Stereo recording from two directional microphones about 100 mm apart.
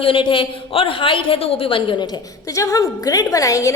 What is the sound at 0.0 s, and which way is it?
A woman's voice, 60° left (ahead or behind).